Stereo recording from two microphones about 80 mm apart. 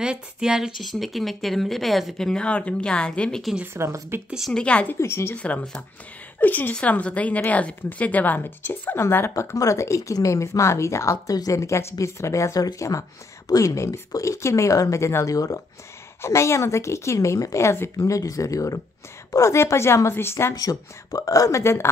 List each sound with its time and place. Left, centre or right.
0.0 s a woman's voice: centre
3.7 s a woman's voice: right
4.3 s a woman's voice: centre
4.6 s speech: centre
5.0 s a woman's voice: left
5.3 s a woman's voice: centre; by 15.6 s left
16.2 s a woman's voice: left
20.5 s speech: left